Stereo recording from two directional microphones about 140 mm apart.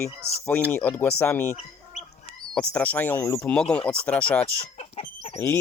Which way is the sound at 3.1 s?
20° left (ahead or behind).